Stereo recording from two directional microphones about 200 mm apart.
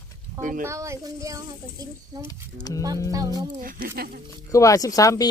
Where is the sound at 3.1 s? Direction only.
20° right (ahead or behind).